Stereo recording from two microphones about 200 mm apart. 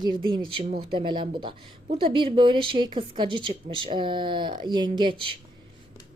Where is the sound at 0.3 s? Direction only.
25° right (ahead or behind).